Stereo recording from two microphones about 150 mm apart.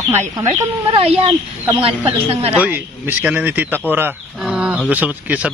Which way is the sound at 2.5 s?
10° right (ahead or behind).